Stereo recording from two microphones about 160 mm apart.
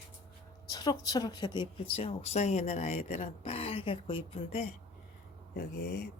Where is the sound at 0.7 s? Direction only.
25° left (ahead or behind).